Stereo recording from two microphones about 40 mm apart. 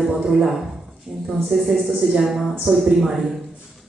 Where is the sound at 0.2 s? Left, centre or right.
Centre.